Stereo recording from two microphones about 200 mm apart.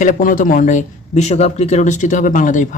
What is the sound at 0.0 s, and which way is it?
Speech, 40° left (ahead or behind).